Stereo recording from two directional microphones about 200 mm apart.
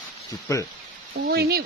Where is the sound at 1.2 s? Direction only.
50° right (ahead or behind).